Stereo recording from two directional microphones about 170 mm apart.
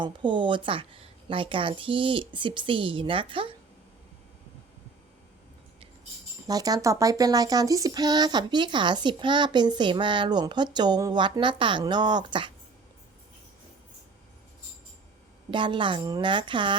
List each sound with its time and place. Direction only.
0.0 s a woman's voice: 30° right (ahead or behind)
6.5 s speech: 20° right (ahead or behind)
15.4 s speech: 30° right (ahead or behind)